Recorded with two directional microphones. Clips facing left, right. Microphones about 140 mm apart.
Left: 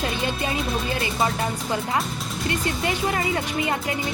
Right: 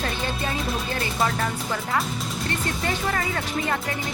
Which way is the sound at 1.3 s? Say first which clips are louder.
Left 1 dB; 20° left (ahead or behind).